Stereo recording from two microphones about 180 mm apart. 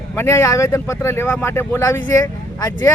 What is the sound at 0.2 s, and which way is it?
Speech, 15° left (ahead or behind).